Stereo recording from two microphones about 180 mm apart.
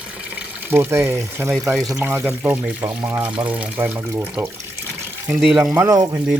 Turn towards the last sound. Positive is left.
turn(degrees=-15)  # may be behind; listen again after turning